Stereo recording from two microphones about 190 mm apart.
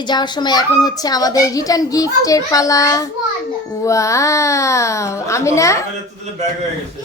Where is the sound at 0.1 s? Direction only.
20° left (ahead or behind).